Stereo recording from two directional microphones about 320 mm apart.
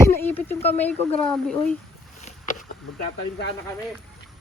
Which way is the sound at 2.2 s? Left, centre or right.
Left.